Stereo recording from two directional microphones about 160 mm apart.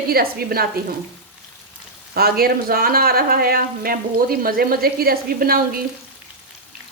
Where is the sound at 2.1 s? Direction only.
75° right (ahead or behind).